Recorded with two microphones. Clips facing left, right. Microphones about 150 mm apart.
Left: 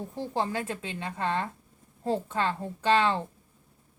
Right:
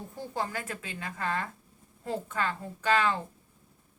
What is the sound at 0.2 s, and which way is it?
A woman's voice, 25° left (ahead or behind).